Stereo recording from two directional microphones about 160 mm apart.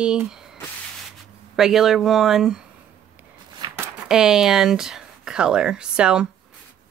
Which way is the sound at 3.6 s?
30° right (ahead or behind).